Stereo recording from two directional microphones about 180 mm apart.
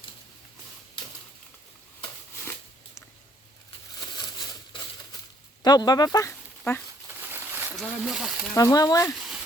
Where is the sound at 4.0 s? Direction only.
25° left (ahead or behind).